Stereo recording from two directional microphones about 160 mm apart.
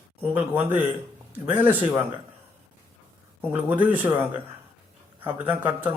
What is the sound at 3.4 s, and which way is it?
Speech, 10° right (ahead or behind).